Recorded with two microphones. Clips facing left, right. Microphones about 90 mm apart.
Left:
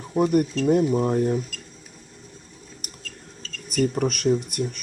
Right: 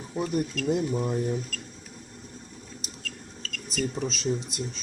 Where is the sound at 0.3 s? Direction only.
50° left (ahead or behind).